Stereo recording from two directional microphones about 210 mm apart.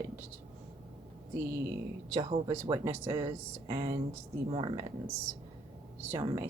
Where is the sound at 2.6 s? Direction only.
15° right (ahead or behind).